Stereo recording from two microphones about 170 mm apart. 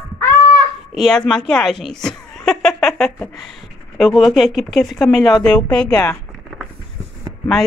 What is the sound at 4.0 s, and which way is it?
A woman's voice, centre (ahead or behind).